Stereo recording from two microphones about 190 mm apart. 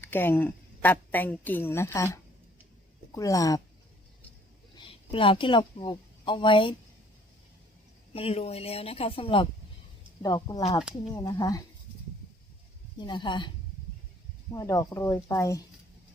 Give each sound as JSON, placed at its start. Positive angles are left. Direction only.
{"t": 0.0, "sound": "a woman's voice", "side_deg": 10}
{"t": 3.1, "sound": "speech", "side_deg": 15}
{"t": 4.8, "sound": "a woman's voice", "side_deg": 25}
{"t": 8.1, "sound": "speech", "side_deg": 30}
{"t": 13.0, "sound": "speech", "side_deg": 25}
{"t": 14.5, "sound": "speech", "side_deg": 20}